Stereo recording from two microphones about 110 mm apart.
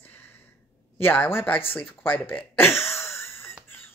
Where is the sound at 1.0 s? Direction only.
20° left (ahead or behind).